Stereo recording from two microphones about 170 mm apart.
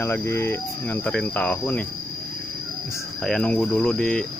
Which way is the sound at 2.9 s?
15° left (ahead or behind).